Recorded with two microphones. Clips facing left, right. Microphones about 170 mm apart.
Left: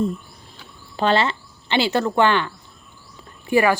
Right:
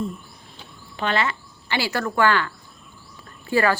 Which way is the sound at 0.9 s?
30° left (ahead or behind).